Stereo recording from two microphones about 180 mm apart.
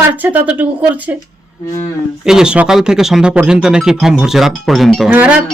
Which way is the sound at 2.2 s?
5° right (ahead or behind).